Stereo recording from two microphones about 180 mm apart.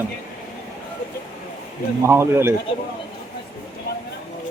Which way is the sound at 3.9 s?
60° left (ahead or behind).